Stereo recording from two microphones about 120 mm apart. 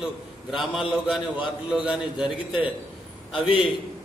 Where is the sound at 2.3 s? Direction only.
45° left (ahead or behind).